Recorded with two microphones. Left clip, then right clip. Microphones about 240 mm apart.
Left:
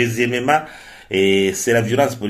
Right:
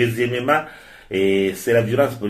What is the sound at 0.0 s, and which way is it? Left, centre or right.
Speech, left.